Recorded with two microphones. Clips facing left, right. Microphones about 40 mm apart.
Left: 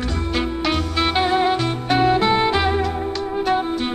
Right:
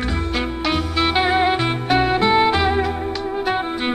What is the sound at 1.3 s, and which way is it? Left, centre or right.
Music, centre.